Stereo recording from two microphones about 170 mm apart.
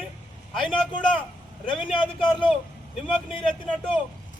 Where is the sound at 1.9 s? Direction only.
30° left (ahead or behind).